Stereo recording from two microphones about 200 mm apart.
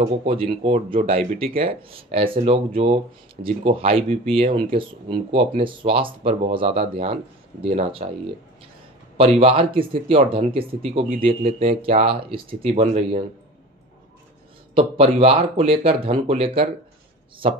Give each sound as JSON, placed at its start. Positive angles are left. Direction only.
{"t": 0.0, "sound": "speech", "side_deg": -30}
{"t": 9.4, "sound": "speech", "side_deg": -25}
{"t": 14.8, "sound": "speech", "side_deg": -25}